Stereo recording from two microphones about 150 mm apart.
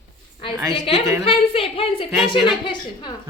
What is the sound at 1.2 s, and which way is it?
A woman's voice, 35° left (ahead or behind).